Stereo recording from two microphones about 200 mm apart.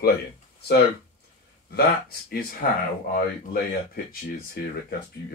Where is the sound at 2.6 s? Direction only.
45° left (ahead or behind).